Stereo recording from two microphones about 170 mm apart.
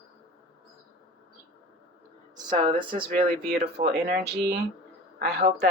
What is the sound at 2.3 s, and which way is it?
Speech, 30° right (ahead or behind).